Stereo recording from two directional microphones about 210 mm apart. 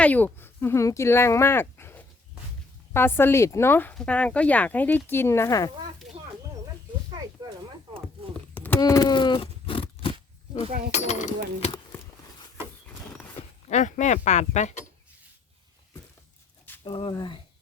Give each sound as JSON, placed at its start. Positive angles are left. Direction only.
{"t": 0.0, "sound": "speech", "side_deg": 5}
{"t": 8.5, "sound": "a sound", "side_deg": 10}
{"t": 8.8, "sound": "speech", "side_deg": 20}
{"t": 13.7, "sound": "speech", "side_deg": 35}
{"t": 16.8, "sound": "speech", "side_deg": 25}